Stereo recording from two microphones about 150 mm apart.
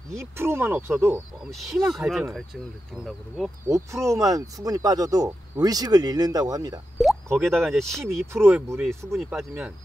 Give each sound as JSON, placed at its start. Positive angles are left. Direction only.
{"t": 0.1, "sound": "speech", "side_deg": -15}
{"t": 1.9, "sound": "speech", "side_deg": 0}
{"t": 3.6, "sound": "speech", "side_deg": -20}
{"t": 7.0, "sound": "plop", "side_deg": 0}
{"t": 7.4, "sound": "speech", "side_deg": 0}
{"t": 8.3, "sound": "speech", "side_deg": -15}
{"t": 9.2, "sound": "speech", "side_deg": 0}